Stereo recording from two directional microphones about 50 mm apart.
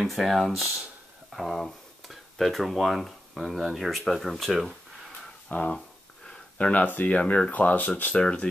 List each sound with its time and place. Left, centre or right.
0.0 s speech: centre
5.5 s speech: left
8.2 s speech: left